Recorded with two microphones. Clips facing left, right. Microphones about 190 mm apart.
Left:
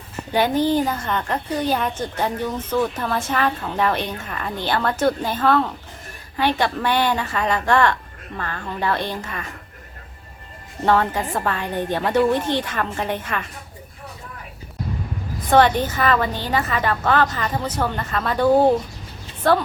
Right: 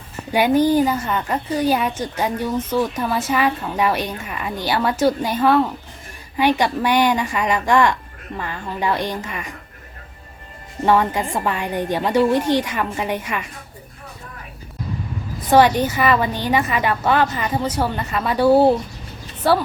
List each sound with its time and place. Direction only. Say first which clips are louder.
0.3 s a woman's voice: right 3 dB; 10° right (ahead or behind)
10.8 s a woman's voice: right 2 dB; 15° right (ahead or behind)
15.4 s a woman's voice: right 2 dB; 10° right (ahead or behind)